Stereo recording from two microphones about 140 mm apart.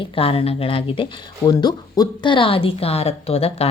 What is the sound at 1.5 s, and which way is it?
Speech, 30° left (ahead or behind).